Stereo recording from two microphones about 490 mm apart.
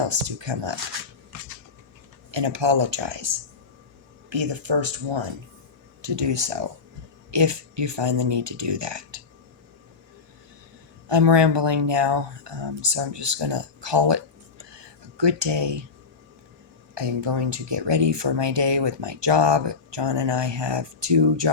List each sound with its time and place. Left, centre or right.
0.1 s speech: right
2.3 s speech: right
11.1 s speech: right
15.2 s speech: right
16.9 s speech: right